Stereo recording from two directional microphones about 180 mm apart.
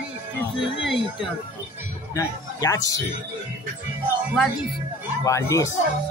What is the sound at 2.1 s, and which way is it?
Speech, 20° left (ahead or behind).